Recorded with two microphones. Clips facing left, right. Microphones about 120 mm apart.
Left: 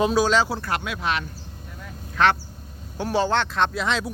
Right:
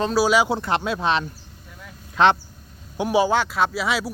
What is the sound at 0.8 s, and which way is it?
Speech, 30° right (ahead or behind).